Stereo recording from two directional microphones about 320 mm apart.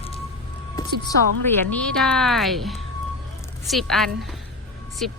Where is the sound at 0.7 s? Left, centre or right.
Centre.